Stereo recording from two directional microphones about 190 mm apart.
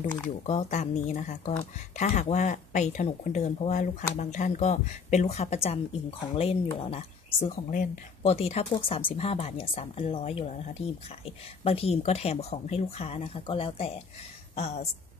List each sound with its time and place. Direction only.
0.5 s speech: 35° left (ahead or behind)
7.4 s speech: 45° left (ahead or behind)
8.2 s a woman's voice: 30° left (ahead or behind)